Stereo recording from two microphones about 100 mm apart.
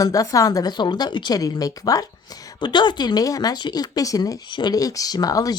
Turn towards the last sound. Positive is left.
turn(degrees=35)  # may be behind; listen again after turning